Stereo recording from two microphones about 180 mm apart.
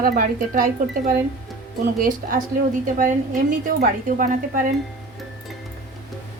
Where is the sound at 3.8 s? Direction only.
50° right (ahead or behind).